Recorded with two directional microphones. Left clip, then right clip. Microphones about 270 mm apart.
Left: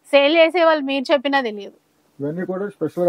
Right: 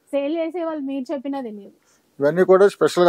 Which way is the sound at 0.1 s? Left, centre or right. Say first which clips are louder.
Left 10 dB; centre.